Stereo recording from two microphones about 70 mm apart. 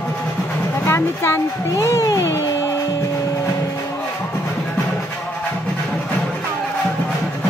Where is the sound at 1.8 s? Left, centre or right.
Left.